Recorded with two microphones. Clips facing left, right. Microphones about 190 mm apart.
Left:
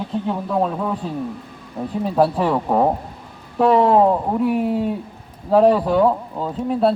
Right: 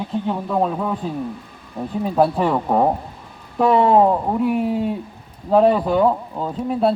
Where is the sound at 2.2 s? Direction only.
5° left (ahead or behind).